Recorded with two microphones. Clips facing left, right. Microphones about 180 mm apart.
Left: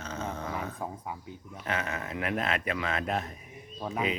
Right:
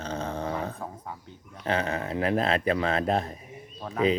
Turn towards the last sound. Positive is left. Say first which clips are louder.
# right 5 dB
turn(degrees=10)  # may be behind; listen again after turning